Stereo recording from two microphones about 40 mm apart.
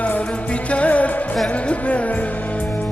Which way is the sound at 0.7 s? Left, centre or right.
Left.